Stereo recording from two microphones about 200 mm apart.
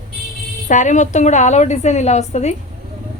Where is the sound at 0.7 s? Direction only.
40° left (ahead or behind).